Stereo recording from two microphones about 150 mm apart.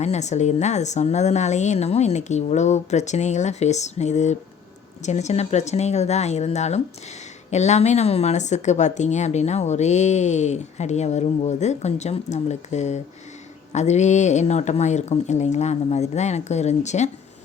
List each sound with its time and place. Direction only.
0.0 s speech: 50° left (ahead or behind)